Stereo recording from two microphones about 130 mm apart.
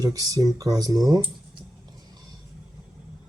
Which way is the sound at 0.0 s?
25° right (ahead or behind).